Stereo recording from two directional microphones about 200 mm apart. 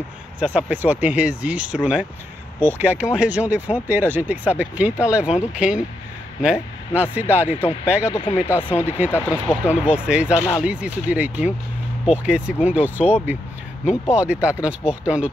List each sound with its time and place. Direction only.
0.4 s speech: 5° right (ahead or behind)
8.1 s speech: 25° left (ahead or behind)
8.6 s speech: 10° left (ahead or behind)
9.3 s speech: 5° right (ahead or behind)
14.1 s speech: 5° right (ahead or behind)